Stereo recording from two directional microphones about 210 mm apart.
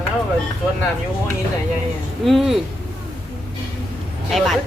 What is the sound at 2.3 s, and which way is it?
Speech, centre (ahead or behind).